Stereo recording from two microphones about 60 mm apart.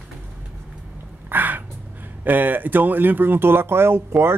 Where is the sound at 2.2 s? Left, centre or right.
Right.